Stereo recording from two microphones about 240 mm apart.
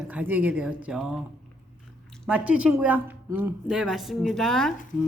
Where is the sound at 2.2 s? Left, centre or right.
Centre.